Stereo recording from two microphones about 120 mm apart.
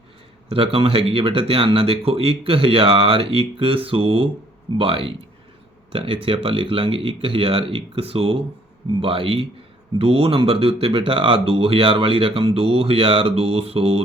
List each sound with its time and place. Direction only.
0.5 s speech: 45° right (ahead or behind)